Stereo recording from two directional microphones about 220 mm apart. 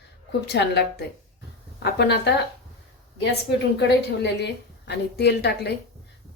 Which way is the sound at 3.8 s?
50° left (ahead or behind).